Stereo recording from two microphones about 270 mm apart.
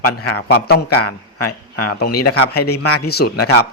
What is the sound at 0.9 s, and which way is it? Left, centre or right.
A man's voice, left.